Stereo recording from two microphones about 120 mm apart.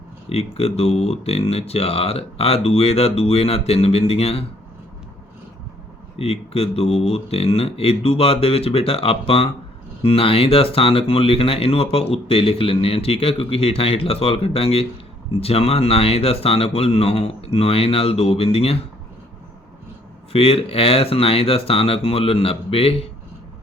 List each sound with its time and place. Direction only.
0.3 s speech: 60° left (ahead or behind)
6.1 s speech: 55° left (ahead or behind)
20.3 s speech: 55° left (ahead or behind)